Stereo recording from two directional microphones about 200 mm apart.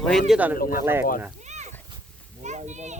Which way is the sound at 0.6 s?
45° left (ahead or behind).